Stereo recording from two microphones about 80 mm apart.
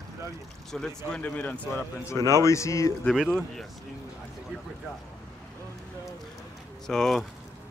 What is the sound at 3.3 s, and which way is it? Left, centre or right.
Speech, centre.